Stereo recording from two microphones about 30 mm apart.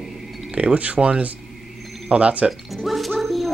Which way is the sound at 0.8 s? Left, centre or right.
Right.